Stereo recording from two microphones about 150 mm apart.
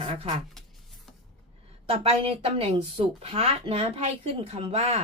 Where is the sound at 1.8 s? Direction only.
40° right (ahead or behind).